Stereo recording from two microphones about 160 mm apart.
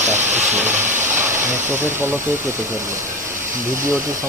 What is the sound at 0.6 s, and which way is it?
Vehicle, 50° right (ahead or behind).